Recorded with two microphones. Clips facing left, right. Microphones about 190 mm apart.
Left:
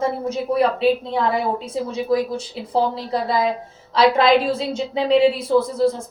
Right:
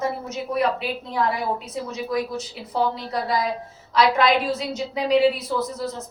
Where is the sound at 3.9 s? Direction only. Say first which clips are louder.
Left 4 dB; 30° left (ahead or behind).